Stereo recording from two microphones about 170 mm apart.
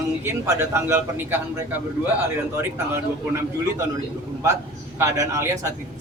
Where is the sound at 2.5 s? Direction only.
15° right (ahead or behind).